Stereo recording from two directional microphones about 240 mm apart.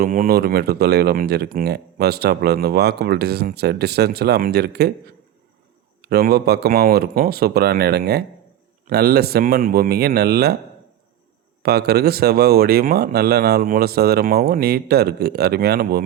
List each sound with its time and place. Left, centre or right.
0.0 s speech: right
6.0 s speech: right
11.6 s speech: right